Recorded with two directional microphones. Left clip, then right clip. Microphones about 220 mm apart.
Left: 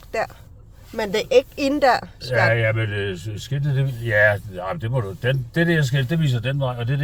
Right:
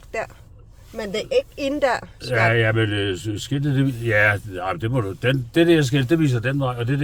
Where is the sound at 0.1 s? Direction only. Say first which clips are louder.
Left 3 dB; 10° left (ahead or behind).